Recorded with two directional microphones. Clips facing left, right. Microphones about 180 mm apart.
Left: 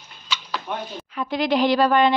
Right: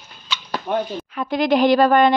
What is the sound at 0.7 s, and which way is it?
A woman's voice, 40° right (ahead or behind).